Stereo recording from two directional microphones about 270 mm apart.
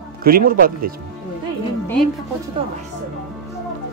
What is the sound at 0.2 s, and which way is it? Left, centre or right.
Speech, right.